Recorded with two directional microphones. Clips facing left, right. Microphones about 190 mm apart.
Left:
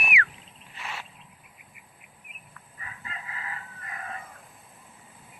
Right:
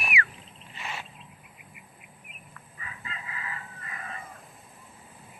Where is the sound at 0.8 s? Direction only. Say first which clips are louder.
Right 1 dB; centre (ahead or behind).